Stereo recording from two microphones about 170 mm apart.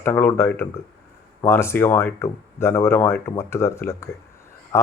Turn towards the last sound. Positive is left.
turn(degrees=15)  # may be behind; listen again after turning